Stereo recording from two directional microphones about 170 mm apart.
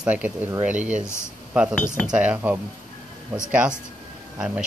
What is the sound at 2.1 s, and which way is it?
Speech, 5° right (ahead or behind).